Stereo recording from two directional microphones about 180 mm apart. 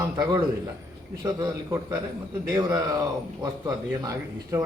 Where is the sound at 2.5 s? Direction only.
20° right (ahead or behind).